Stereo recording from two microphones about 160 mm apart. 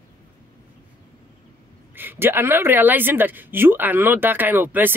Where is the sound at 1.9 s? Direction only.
15° right (ahead or behind).